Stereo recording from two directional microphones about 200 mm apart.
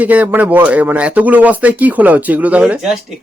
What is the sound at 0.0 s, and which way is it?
Speech, 5° right (ahead or behind).